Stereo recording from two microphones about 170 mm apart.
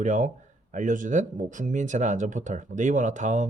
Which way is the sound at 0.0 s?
45° right (ahead or behind).